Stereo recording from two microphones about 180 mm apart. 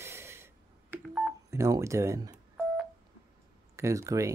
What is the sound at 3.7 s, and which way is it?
Speech, 15° right (ahead or behind).